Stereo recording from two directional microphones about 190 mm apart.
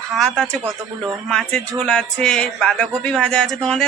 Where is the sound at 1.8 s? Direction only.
5° left (ahead or behind).